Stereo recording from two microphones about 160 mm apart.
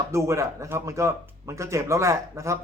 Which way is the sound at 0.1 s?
20° right (ahead or behind).